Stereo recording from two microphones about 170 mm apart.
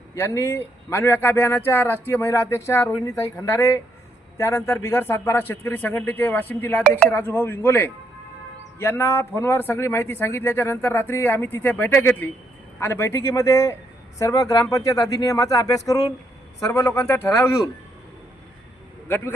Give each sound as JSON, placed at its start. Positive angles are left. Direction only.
{"t": 0.1, "sound": "speech", "side_deg": 15}
{"t": 19.0, "sound": "speech", "side_deg": 15}